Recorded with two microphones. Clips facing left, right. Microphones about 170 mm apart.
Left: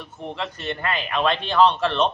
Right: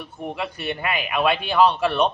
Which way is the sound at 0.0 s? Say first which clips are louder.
Right 2 dB; 10° right (ahead or behind).